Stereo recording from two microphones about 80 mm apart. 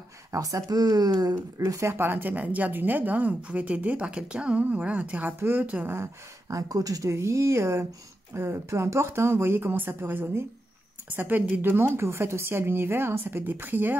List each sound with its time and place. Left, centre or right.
0.3 s speech: right
1.6 s speech: right; by 5.3 s centre
5.4 s speech: right
6.5 s a woman's voice: right